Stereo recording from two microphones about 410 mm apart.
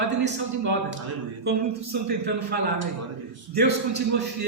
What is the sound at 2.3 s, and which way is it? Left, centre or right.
A man's voice, right.